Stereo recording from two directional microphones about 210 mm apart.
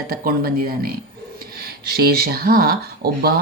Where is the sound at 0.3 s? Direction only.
45° right (ahead or behind).